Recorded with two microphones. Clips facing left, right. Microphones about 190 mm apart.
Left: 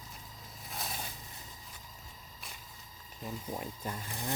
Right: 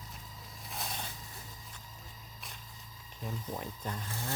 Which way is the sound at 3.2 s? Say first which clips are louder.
Even; 5° left (ahead or behind).